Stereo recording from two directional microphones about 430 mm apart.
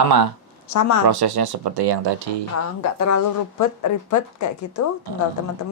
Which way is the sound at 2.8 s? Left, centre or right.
Left.